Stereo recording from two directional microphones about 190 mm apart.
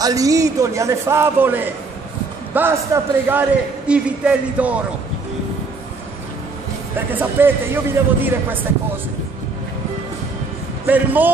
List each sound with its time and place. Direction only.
0.0 s a man's voice: 20° right (ahead or behind)
7.1 s a man's voice: 10° right (ahead or behind)
10.9 s a man's voice: 10° right (ahead or behind)